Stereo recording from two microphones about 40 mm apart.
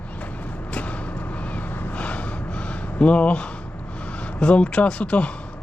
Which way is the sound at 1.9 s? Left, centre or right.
Left.